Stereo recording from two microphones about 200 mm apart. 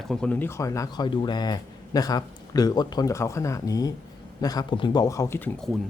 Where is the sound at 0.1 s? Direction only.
5° left (ahead or behind).